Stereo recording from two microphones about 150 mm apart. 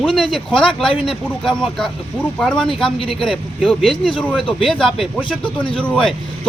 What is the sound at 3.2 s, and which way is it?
A man's voice, centre (ahead or behind).